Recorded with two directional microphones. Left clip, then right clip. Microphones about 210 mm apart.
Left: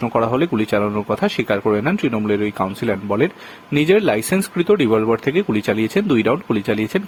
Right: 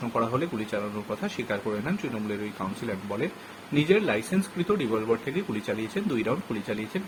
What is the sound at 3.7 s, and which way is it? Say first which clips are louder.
Speech: left 8 dB; 50° left (ahead or behind).